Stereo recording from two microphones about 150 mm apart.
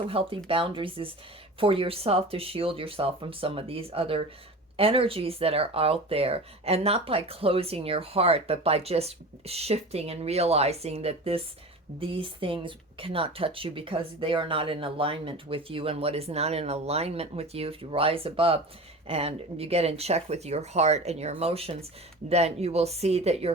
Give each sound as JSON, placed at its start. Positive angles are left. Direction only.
{"t": 0.0, "sound": "speech", "side_deg": -40}